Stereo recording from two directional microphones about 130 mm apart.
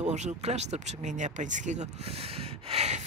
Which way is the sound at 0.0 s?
60° right (ahead or behind).